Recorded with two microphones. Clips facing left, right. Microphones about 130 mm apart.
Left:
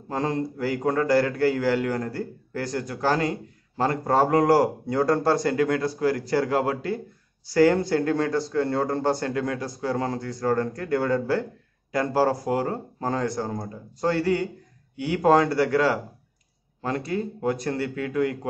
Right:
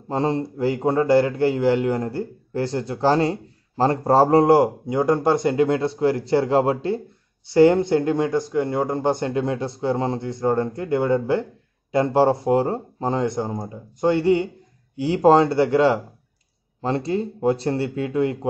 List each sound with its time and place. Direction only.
0.1 s a man's voice: 25° right (ahead or behind)